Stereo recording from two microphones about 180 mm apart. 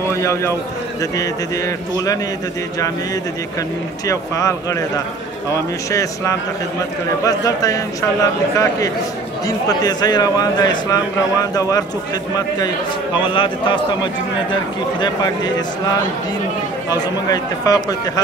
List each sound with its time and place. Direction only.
0.2 s a man's voice: 15° left (ahead or behind)
4.1 s speech: 20° left (ahead or behind)
5.9 s a man's voice: 15° left (ahead or behind)
12.4 s a man's voice: 20° left (ahead or behind)
17.3 s a man's voice: 20° left (ahead or behind)